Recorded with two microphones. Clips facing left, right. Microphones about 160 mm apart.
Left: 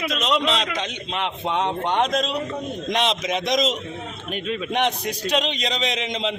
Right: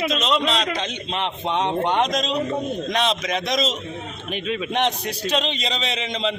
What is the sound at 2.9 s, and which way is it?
A man's voice, 20° left (ahead or behind).